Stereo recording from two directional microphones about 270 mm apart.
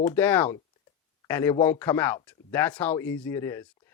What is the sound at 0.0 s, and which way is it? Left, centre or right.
Speech, centre.